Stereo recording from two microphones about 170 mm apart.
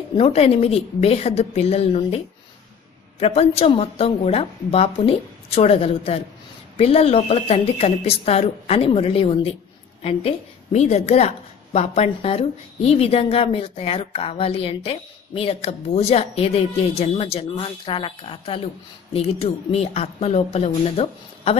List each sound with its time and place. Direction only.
0.1 s a woman's voice: 35° left (ahead or behind)